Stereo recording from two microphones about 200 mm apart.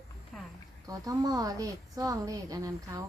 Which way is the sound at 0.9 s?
20° right (ahead or behind).